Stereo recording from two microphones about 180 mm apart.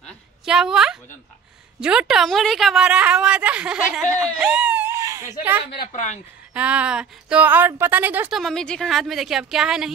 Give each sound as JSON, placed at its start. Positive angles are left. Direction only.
{"t": 0.0, "sound": "a sound", "side_deg": -5}
{"t": 1.8, "sound": "a woman's voice", "side_deg": -5}
{"t": 5.9, "sound": "speech", "side_deg": 45}
{"t": 6.5, "sound": "a woman's voice", "side_deg": -5}